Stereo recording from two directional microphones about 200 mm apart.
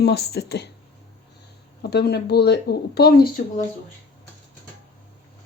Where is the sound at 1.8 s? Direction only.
55° left (ahead or behind).